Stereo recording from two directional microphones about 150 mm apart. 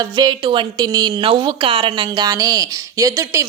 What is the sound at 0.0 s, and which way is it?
A woman's voice, 30° right (ahead or behind).